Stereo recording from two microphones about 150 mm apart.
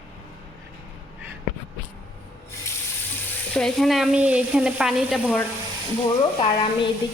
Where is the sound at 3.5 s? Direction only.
Centre (ahead or behind).